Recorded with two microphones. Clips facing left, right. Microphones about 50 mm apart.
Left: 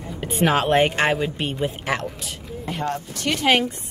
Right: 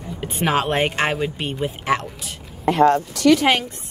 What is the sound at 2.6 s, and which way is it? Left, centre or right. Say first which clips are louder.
Speech: right 13 dB; right.